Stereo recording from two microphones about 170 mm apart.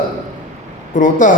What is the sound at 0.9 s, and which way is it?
Speech, 50° left (ahead or behind).